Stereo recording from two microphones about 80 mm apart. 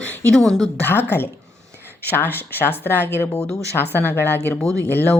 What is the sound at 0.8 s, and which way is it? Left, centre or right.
Speech, left.